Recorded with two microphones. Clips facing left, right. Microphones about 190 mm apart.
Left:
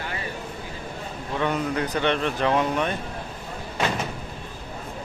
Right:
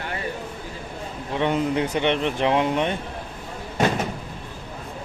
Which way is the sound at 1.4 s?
25° right (ahead or behind).